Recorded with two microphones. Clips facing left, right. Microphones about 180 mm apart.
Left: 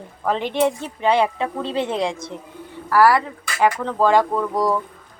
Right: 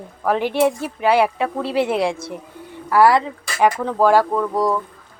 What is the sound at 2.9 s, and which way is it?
Speech, 20° right (ahead or behind).